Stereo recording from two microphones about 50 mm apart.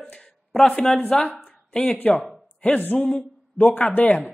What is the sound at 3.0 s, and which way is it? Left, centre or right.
Speech, centre.